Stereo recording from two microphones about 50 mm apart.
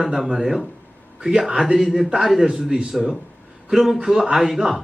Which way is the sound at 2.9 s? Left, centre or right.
Centre.